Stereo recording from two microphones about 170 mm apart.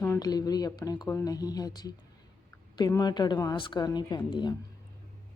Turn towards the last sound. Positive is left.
turn(degrees=25)  # may be behind; listen again after turning